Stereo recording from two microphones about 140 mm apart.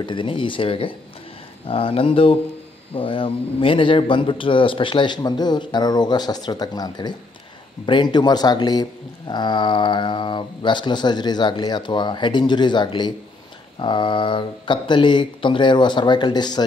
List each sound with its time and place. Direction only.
0.0 s a man's voice: 35° left (ahead or behind)